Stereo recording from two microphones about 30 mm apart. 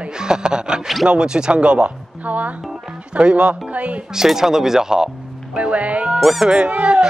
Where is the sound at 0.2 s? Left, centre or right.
Right.